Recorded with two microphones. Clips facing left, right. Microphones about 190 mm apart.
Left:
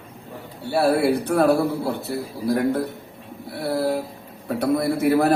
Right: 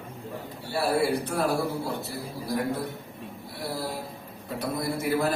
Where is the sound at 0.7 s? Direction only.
65° left (ahead or behind).